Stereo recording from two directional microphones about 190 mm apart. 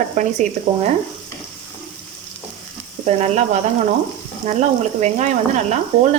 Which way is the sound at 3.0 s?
35° right (ahead or behind).